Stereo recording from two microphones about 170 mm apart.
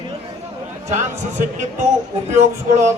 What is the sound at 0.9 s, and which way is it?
A man's voice, 45° right (ahead or behind).